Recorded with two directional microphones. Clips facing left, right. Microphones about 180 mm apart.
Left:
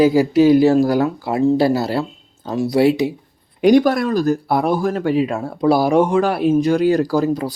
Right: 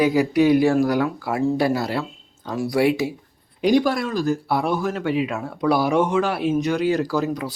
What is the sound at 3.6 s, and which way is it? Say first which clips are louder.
Speech: left 6 dB; 50° left (ahead or behind).